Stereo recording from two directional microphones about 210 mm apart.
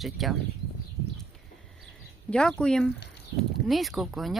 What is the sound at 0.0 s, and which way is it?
Speech, centre (ahead or behind).